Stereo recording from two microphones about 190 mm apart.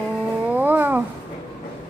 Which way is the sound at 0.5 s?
10° right (ahead or behind).